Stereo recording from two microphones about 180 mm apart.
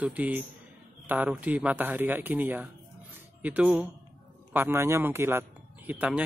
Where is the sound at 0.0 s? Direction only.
10° right (ahead or behind).